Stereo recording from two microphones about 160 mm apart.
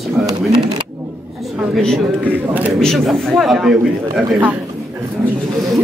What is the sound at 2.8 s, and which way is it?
Speech, centre (ahead or behind).